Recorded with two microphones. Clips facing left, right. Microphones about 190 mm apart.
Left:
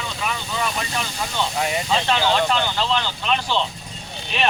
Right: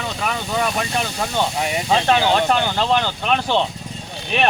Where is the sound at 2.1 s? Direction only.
50° right (ahead or behind).